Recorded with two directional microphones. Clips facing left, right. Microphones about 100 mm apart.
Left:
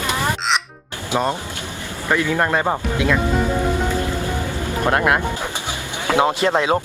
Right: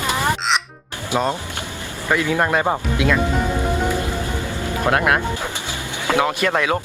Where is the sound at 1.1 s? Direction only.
20° left (ahead or behind).